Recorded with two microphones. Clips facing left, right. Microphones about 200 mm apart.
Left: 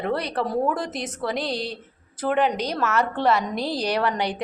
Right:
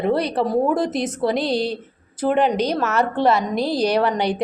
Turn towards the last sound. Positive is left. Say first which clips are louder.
# right 5 dB
turn(degrees=-20)  # may be behind; listen again after turning